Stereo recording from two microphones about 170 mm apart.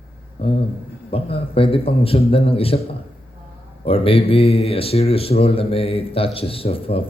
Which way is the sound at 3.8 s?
35° left (ahead or behind).